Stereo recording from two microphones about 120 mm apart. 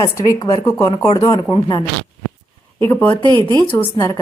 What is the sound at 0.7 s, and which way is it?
Speech, 25° left (ahead or behind).